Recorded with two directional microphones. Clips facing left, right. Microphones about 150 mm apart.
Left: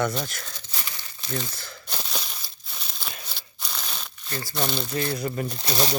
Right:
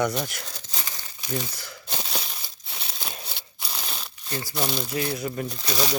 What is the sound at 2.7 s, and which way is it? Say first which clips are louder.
Crumpling: right 2 dB; 70° right (ahead or behind).